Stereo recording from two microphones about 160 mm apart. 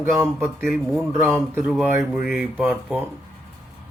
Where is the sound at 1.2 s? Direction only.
15° right (ahead or behind).